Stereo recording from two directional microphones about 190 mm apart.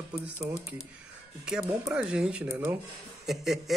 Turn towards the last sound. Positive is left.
turn(degrees=0)  # may be behind; listen again after turning